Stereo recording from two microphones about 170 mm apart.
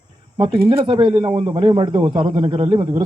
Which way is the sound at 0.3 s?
25° right (ahead or behind).